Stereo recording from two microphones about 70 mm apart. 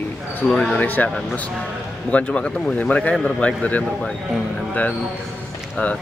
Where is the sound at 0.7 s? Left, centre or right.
Left.